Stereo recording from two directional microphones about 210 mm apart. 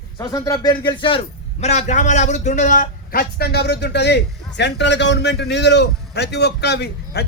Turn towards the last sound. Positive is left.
turn(degrees=50)  # may be behind; listen again after turning